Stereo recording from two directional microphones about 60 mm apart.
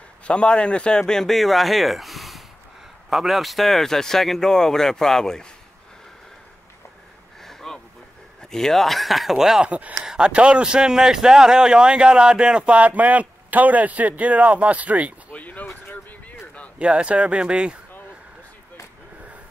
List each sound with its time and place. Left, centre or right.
0.3 s speech: centre
7.4 s a sound: centre
8.4 s speech: centre
9.7 s speech: right
15.3 s a sound: left
16.7 s speech: centre